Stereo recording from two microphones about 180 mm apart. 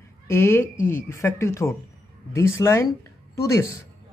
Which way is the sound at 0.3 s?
15° left (ahead or behind).